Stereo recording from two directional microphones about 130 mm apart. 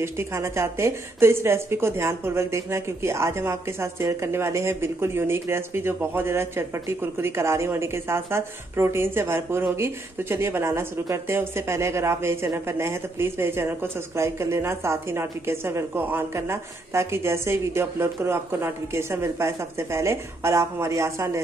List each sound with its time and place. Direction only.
0.0 s a woman's voice: 20° right (ahead or behind)